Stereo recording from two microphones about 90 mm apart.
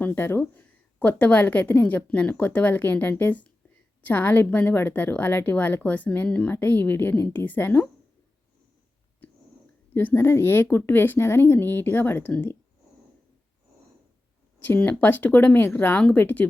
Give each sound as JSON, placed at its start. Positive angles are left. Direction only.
{"t": 0.0, "sound": "a woman's voice", "side_deg": 25}
{"t": 9.2, "sound": "a sound", "side_deg": 20}
{"t": 9.9, "sound": "a woman's voice", "side_deg": 25}
{"t": 14.6, "sound": "a woman's voice", "side_deg": 20}